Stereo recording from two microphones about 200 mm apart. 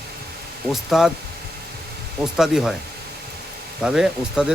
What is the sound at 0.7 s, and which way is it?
Speech, centre (ahead or behind).